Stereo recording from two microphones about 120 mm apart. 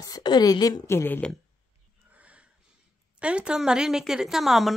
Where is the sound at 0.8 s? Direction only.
20° left (ahead or behind).